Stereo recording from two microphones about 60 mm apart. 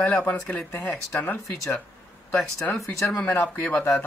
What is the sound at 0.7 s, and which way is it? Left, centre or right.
Speech, left.